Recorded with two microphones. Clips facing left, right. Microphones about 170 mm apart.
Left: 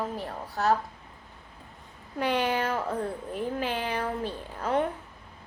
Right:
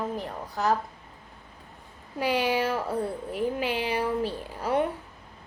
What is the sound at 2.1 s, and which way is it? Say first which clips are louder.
A woman's voice: right 1 dB; 10° right (ahead or behind).